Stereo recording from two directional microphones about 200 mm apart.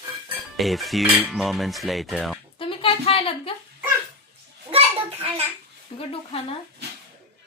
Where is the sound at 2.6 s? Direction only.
25° left (ahead or behind).